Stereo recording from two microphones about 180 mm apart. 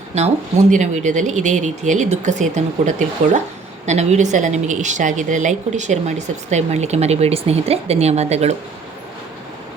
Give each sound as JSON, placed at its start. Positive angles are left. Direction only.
{"t": 0.1, "sound": "a woman's voice", "side_deg": -40}